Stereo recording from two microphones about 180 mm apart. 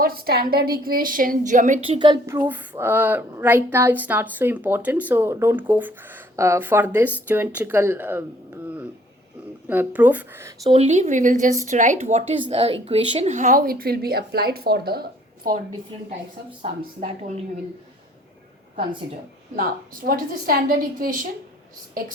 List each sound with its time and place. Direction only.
0.0 s a woman's voice: 55° right (ahead or behind)
2.0 s a woman's voice: 20° right (ahead or behind)
9.6 s speech: 10° right (ahead or behind)
10.7 s a woman's voice: 35° right (ahead or behind); by 15.6 s 55° right (ahead or behind)
16.6 s speech: 30° right (ahead or behind)
19.5 s a woman's voice: 50° right (ahead or behind)